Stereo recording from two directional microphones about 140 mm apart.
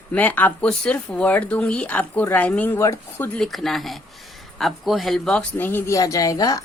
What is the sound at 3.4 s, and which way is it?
A woman's voice, centre (ahead or behind).